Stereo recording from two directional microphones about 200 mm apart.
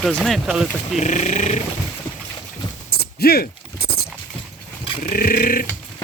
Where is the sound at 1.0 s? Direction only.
35° left (ahead or behind).